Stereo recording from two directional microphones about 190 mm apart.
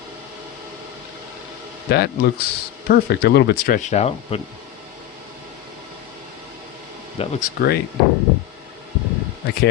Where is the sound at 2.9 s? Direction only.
55° left (ahead or behind); by 4.4 s 35° left (ahead or behind).